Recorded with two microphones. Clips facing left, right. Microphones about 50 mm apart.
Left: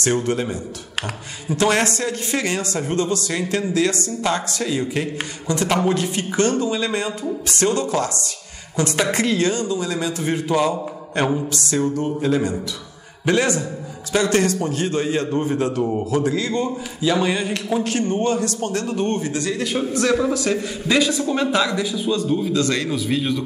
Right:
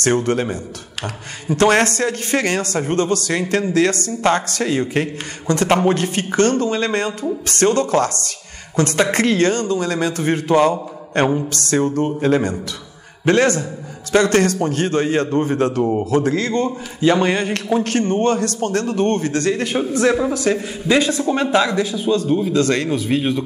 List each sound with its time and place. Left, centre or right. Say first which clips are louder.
0.0 s a man's voice: right 3 dB; right
11.4 s a man's voice: right 3 dB; right
19.5 s speech: right 3 dB; right
22.5 s speech: right 3 dB; right